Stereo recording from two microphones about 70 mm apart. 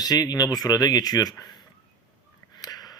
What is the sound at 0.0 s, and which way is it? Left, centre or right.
Speech, left.